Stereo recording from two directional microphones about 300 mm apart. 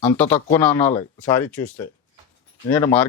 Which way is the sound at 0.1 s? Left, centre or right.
Centre.